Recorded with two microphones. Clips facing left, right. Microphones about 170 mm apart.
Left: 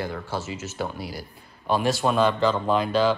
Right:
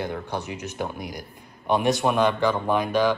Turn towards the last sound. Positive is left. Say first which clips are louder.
# even
turn(degrees=-15)  # may be behind; listen again after turning